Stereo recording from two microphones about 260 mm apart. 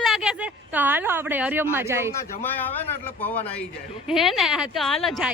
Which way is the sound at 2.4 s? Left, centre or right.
Centre.